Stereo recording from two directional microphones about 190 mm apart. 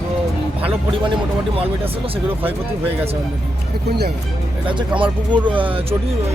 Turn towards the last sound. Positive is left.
turn(degrees=-30)  # may be behind; listen again after turning